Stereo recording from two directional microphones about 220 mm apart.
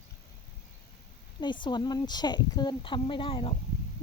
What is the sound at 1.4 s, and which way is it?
A woman's voice, 20° left (ahead or behind).